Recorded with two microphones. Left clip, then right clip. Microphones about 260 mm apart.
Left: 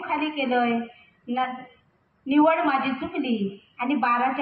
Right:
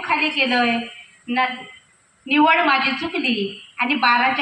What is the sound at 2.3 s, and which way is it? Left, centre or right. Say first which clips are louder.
A woman's voice: right 5 dB; centre.